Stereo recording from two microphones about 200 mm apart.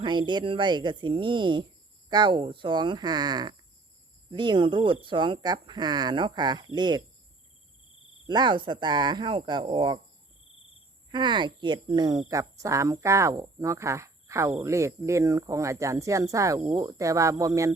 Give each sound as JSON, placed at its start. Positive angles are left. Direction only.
{"t": 0.0, "sound": "speech", "side_deg": -20}
{"t": 8.3, "sound": "speech", "side_deg": -20}
{"t": 11.1, "sound": "speech", "side_deg": -20}